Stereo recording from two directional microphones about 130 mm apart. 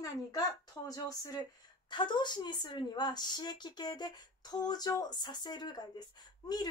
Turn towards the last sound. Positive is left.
turn(degrees=30)  # may be behind; listen again after turning